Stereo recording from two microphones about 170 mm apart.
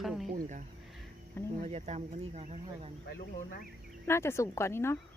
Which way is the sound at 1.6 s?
40° right (ahead or behind).